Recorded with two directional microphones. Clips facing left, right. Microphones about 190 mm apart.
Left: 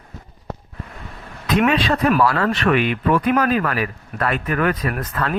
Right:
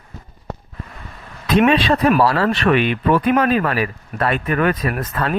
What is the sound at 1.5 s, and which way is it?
Speech, 30° right (ahead or behind).